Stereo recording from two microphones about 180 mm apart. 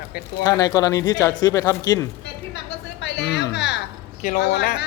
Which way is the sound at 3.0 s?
75° left (ahead or behind).